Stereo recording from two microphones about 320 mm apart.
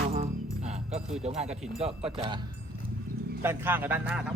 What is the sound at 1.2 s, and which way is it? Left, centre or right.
Speech, centre.